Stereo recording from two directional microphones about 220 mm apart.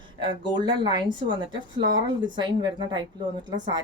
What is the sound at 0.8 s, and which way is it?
A woman's voice, 20° right (ahead or behind).